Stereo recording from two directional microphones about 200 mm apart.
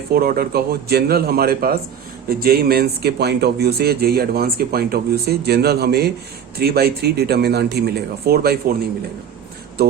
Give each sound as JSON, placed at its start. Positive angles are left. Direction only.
{"t": 0.1, "sound": "speech", "side_deg": -50}